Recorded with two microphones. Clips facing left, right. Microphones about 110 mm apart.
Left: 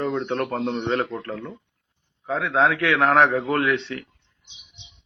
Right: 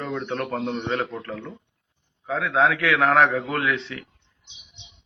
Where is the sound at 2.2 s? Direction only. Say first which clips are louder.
Even; 25° left (ahead or behind).